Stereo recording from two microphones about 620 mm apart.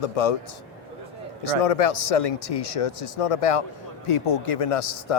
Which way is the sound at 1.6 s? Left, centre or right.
Left.